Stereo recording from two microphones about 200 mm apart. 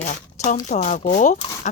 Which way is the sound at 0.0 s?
40° left (ahead or behind).